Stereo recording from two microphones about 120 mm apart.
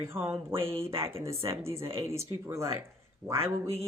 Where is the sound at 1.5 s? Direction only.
25° right (ahead or behind).